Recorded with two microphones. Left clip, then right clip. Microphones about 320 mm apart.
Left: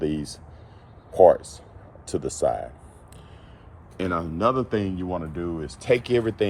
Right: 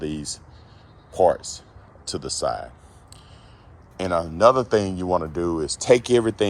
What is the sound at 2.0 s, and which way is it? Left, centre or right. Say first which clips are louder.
Speech: left 2 dB; right.